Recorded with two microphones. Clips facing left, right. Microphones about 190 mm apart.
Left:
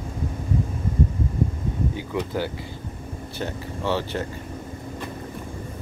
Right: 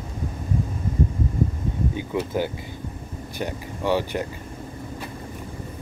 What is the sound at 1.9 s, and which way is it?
Speech, 20° right (ahead or behind).